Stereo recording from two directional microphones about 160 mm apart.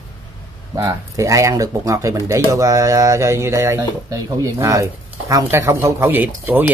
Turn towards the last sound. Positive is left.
turn(degrees=-10)  # may be behind; listen again after turning